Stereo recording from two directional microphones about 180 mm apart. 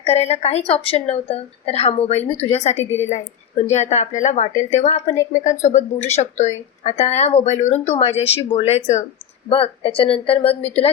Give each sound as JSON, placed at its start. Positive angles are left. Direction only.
{"t": 0.0, "sound": "speech", "side_deg": 35}